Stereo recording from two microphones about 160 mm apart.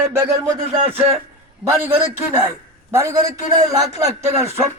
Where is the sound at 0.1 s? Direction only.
20° right (ahead or behind).